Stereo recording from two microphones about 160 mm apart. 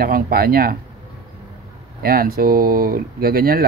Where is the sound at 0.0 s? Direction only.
70° right (ahead or behind).